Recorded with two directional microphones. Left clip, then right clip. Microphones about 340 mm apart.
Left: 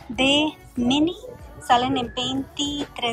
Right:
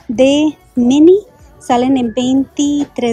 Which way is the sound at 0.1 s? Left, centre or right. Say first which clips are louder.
Right 9 dB; centre.